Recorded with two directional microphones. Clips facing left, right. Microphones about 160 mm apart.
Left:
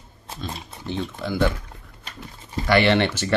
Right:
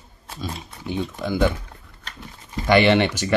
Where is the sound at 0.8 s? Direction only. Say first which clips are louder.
Right 2 dB; 15° right (ahead or behind).